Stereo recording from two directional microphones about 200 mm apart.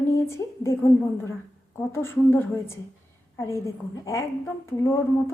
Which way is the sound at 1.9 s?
10° left (ahead or behind).